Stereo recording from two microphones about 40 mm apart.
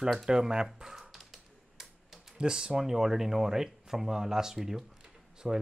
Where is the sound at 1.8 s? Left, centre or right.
Centre.